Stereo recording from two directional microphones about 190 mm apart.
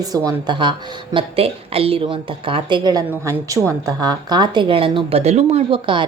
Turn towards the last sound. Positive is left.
turn(degrees=-25)  # may be behind; listen again after turning